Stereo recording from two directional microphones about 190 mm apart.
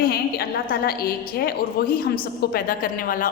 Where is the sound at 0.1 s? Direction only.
55° left (ahead or behind).